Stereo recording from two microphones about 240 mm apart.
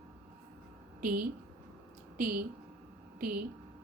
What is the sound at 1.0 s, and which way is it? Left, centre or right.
A woman's voice, right.